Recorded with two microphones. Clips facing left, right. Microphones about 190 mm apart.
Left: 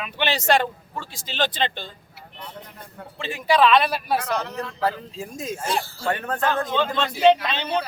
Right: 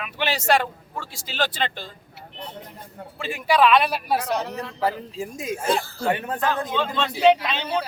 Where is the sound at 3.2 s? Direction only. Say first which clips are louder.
Even; 10° right (ahead or behind).